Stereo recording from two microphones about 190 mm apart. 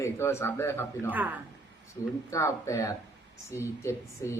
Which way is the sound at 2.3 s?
15° left (ahead or behind).